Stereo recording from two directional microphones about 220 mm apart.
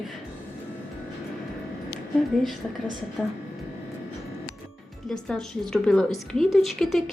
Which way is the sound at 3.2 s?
5° left (ahead or behind).